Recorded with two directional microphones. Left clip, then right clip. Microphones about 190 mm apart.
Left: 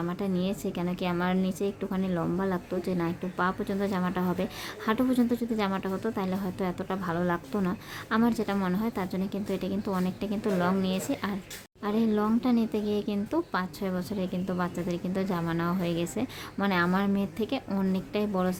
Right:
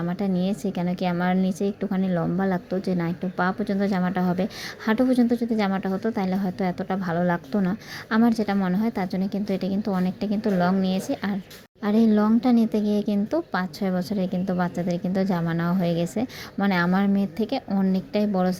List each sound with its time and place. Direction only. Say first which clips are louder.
0.0 s a woman's voice: right 4 dB; 20° right (ahead or behind)